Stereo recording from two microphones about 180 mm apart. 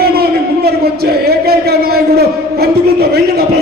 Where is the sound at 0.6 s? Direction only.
60° right (ahead or behind).